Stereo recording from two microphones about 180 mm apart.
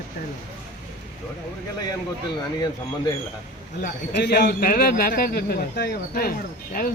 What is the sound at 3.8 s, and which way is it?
A man's voice, 60° left (ahead or behind).